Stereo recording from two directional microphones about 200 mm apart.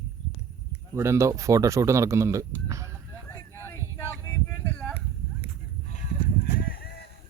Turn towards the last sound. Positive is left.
turn(degrees=50)  # may be behind; listen again after turning